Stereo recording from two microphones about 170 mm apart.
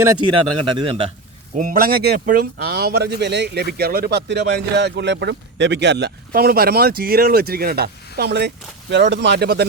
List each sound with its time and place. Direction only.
0.3 s speech: 30° right (ahead or behind)
1.5 s speech: 55° right (ahead or behind); by 8.5 s 80° right
8.9 s speech: 90° right; by 9.6 s 70° right (ahead or behind)